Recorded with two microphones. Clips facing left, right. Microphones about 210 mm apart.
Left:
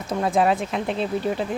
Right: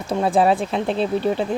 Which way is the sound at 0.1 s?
30° right (ahead or behind).